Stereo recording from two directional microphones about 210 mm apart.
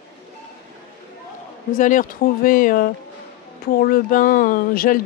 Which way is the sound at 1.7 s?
40° left (ahead or behind).